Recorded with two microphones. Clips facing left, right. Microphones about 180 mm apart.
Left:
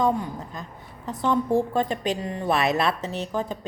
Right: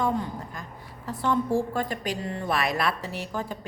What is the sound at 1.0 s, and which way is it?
Speech, 20° left (ahead or behind).